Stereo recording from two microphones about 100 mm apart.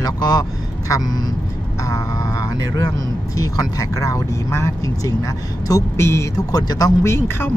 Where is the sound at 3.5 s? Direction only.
35° left (ahead or behind).